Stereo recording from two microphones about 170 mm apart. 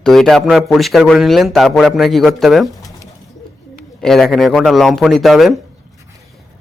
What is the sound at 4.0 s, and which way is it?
A man's voice, centre (ahead or behind).